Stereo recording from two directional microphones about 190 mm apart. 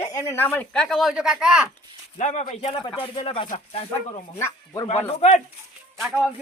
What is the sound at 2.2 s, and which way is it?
Speech, 35° left (ahead or behind).